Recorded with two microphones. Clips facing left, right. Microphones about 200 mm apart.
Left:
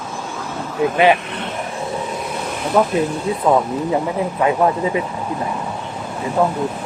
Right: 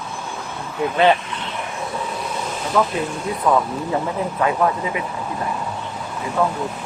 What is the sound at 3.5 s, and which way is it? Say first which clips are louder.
Speech: left 3 dB; 20° left (ahead or behind).